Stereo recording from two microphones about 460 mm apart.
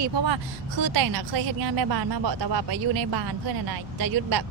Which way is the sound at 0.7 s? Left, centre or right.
Right.